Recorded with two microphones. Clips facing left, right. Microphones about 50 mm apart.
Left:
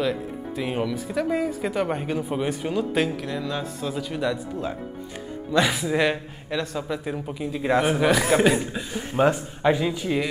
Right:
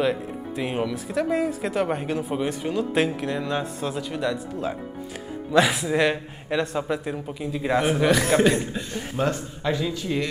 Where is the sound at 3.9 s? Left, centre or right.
Centre.